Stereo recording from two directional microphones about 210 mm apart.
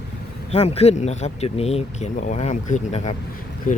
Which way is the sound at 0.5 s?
30° left (ahead or behind).